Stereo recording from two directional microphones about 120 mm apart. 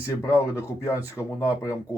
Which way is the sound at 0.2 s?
25° left (ahead or behind).